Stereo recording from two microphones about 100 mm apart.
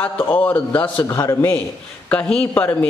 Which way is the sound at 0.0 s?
15° left (ahead or behind).